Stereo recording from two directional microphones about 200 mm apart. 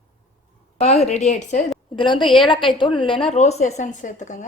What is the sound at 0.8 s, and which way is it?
Speech, 35° left (ahead or behind).